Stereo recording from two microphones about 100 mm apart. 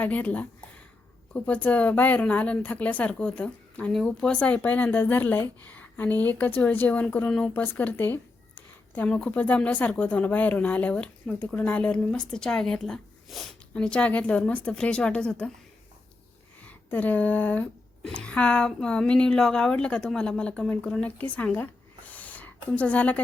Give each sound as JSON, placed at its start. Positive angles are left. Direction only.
{"t": 0.0, "sound": "speech", "side_deg": 15}
{"t": 4.3, "sound": "speech", "side_deg": 10}
{"t": 7.5, "sound": "speech", "side_deg": 15}
{"t": 16.6, "sound": "speech", "side_deg": 15}
{"t": 21.3, "sound": "a sound", "side_deg": 15}